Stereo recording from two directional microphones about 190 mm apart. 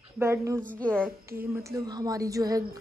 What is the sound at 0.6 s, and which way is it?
Speech, 5° left (ahead or behind).